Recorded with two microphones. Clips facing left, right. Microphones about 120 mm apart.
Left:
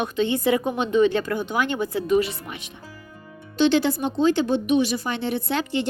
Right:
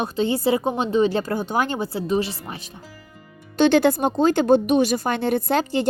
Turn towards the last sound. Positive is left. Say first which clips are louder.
# right 4 dB
turn(degrees=-40)  # may be behind; listen again after turning